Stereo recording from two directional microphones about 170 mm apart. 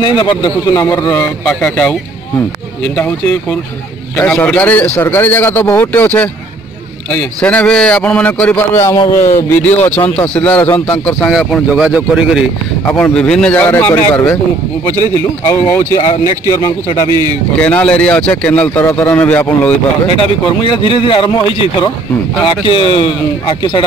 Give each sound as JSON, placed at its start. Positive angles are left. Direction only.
{"t": 0.0, "sound": "speech", "side_deg": 25}
{"t": 0.7, "sound": "a man's voice", "side_deg": 15}
{"t": 12.8, "sound": "a man's voice", "side_deg": 5}
{"t": 15.4, "sound": "a man's voice", "side_deg": 10}
{"t": 20.1, "sound": "speech", "side_deg": 30}